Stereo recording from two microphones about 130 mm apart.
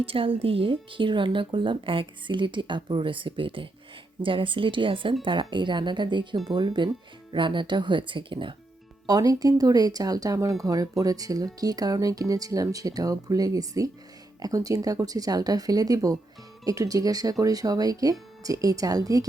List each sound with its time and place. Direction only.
0.0 s speech: 45° right (ahead or behind)
9.0 s speech: 30° right (ahead or behind)